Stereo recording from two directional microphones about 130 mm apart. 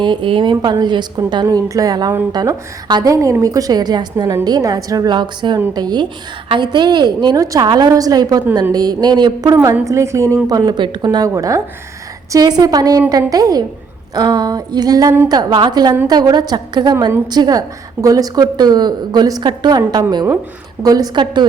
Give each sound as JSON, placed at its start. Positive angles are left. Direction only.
{"t": 0.0, "sound": "a woman's voice", "side_deg": -40}
{"t": 9.8, "sound": "a woman's voice", "side_deg": -20}